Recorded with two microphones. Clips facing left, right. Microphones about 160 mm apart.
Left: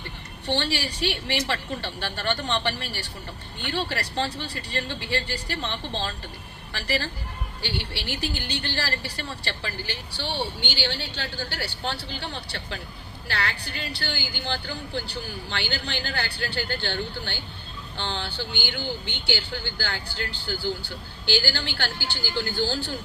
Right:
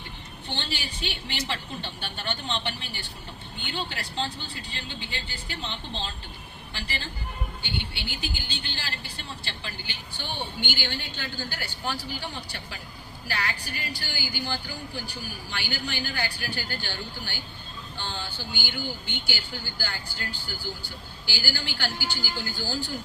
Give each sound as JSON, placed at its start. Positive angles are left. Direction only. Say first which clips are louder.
{"t": 0.4, "sound": "a man's voice", "louder": "left 8 dB", "side_deg": 70}
{"t": 21.2, "sound": "a man's voice", "louder": "left 7 dB", "side_deg": 65}